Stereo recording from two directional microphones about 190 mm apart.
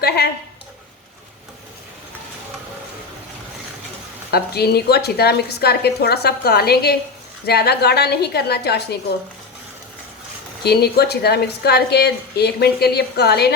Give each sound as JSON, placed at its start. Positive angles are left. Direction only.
{"t": 4.3, "sound": "a woman's voice", "side_deg": 55}
{"t": 10.6, "sound": "a woman's voice", "side_deg": 60}